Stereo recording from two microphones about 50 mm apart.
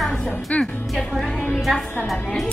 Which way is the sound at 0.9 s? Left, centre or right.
Centre.